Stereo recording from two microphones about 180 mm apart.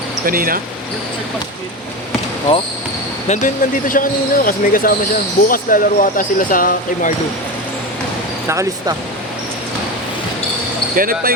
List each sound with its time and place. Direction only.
0.3 s speech: 50° right (ahead or behind)
3.2 s speech: 45° left (ahead or behind)
8.4 s speech: 15° right (ahead or behind)
10.9 s speech: 55° right (ahead or behind)